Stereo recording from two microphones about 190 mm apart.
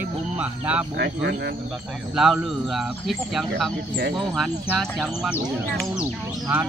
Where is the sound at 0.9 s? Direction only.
65° right (ahead or behind).